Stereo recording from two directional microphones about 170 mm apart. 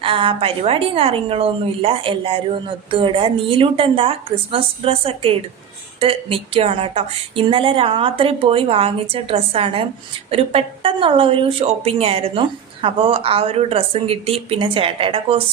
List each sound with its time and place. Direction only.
0.0 s speech: 30° right (ahead or behind)